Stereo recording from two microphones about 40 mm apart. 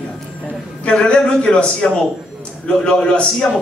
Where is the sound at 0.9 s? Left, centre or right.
Left.